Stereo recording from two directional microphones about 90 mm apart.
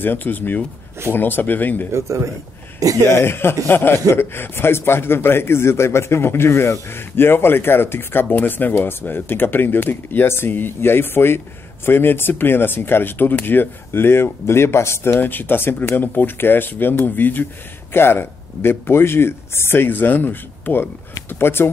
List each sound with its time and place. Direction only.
0.0 s a man's voice: 20° left (ahead or behind)
1.9 s a man's voice: 30° right (ahead or behind)
3.0 s a man's voice: 25° left (ahead or behind)